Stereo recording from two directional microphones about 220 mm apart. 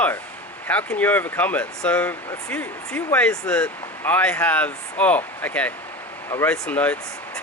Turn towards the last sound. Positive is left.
turn(degrees=5)  # may be behind; listen again after turning